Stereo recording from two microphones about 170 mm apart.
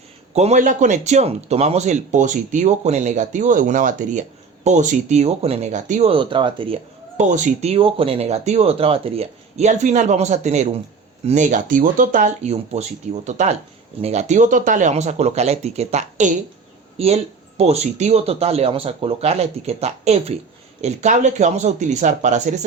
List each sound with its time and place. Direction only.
0.3 s speech: 45° right (ahead or behind)
7.2 s speech: 45° right (ahead or behind)
17.0 s speech: 35° right (ahead or behind)